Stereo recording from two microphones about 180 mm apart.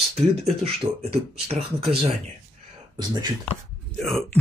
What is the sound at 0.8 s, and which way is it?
Speech, 20° right (ahead or behind).